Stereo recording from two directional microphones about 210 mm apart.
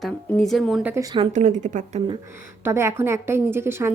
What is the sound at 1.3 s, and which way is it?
Speech, 35° right (ahead or behind).